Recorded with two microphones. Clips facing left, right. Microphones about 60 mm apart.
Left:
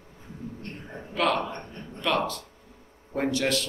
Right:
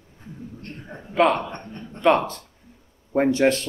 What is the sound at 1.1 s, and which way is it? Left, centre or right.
Speech, right.